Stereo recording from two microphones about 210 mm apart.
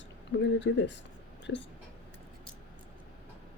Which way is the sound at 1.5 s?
70° left (ahead or behind).